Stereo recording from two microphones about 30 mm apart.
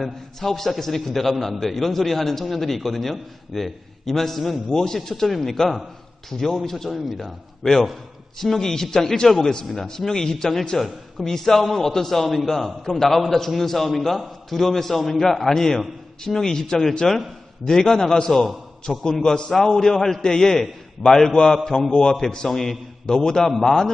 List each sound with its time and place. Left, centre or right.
0.0 s a man's voice: centre
4.7 s a man's voice: centre
7.6 s a man's voice: centre
10.8 s a man's voice: centre
18.9 s a man's voice: centre
19.2 s a man's voice: left
19.5 s a man's voice: centre